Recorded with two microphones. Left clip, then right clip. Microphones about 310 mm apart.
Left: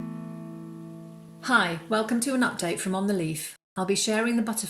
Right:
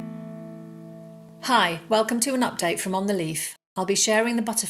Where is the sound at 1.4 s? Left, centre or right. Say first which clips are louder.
Right 3 dB; right.